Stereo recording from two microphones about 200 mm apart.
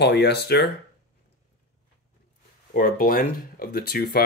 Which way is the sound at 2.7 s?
45° left (ahead or behind).